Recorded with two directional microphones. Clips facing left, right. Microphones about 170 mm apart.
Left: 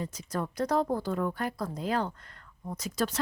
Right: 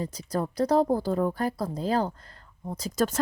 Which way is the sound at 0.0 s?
35° right (ahead or behind).